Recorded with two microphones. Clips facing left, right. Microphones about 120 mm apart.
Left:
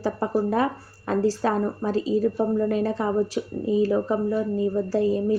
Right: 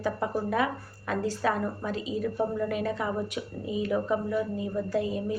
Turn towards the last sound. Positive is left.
turn(degrees=35)  # may be behind; listen again after turning